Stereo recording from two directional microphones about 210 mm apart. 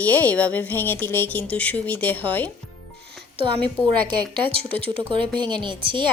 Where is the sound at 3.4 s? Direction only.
20° right (ahead or behind).